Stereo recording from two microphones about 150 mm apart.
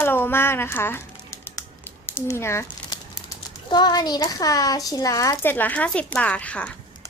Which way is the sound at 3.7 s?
30° left (ahead or behind).